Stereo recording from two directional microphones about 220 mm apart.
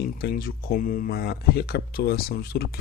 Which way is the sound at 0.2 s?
45° left (ahead or behind).